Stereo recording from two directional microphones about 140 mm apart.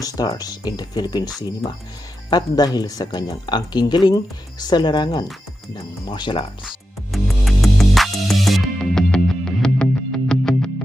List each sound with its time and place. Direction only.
0.0 s speech: 25° left (ahead or behind)
6.7 s music: centre (ahead or behind)